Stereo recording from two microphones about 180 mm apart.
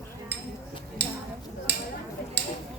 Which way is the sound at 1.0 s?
70° right (ahead or behind).